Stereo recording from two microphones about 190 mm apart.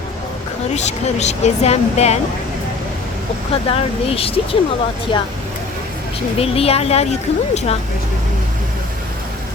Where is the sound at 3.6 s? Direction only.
30° left (ahead or behind).